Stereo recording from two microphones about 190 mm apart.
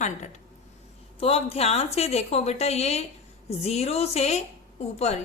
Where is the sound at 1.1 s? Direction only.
30° left (ahead or behind).